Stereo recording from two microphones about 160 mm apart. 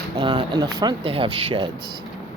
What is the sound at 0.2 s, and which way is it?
Speech, 30° right (ahead or behind).